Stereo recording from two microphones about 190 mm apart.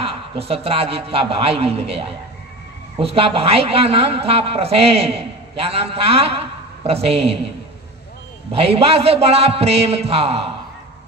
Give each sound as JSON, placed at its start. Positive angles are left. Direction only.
{"t": 0.0, "sound": "a woman's voice", "side_deg": -30}
{"t": 8.5, "sound": "a woman's voice", "side_deg": -30}